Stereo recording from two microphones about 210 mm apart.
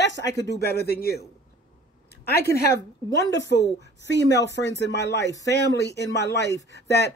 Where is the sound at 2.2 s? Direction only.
50° left (ahead or behind).